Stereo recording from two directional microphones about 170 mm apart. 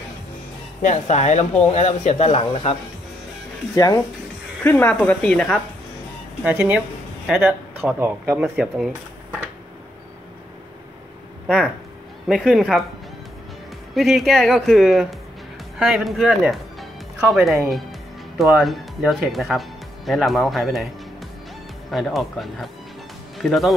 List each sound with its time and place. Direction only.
0.8 s speech: 45° left (ahead or behind)
3.7 s speech: 20° left (ahead or behind)
4.6 s speech: 10° left (ahead or behind)
6.4 s speech: 10° right (ahead or behind)
12.3 s speech: centre (ahead or behind)
13.9 s speech: centre (ahead or behind)
21.9 s speech: centre (ahead or behind)